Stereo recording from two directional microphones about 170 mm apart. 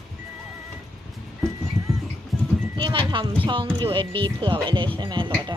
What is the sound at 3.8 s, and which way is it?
Speech, 30° right (ahead or behind).